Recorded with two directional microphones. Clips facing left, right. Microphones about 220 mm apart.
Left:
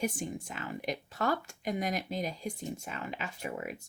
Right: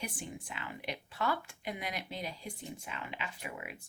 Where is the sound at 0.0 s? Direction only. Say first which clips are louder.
Left 8 dB; 45° left (ahead or behind).